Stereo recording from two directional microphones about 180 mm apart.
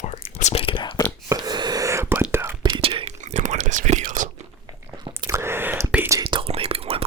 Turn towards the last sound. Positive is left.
turn(degrees=-30)  # may be behind; listen again after turning